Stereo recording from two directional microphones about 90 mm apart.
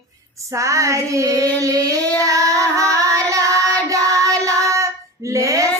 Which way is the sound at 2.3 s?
35° right (ahead or behind).